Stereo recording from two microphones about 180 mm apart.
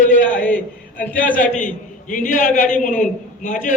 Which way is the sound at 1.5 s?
45° left (ahead or behind).